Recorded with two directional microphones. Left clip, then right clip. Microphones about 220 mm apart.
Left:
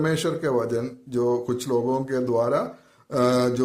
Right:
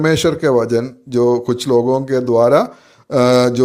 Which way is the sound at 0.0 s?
30° right (ahead or behind).